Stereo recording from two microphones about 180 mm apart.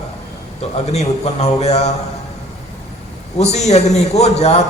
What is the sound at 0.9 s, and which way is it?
Speech, 35° left (ahead or behind).